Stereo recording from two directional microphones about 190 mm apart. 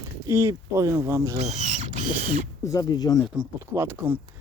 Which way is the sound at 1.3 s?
35° right (ahead or behind).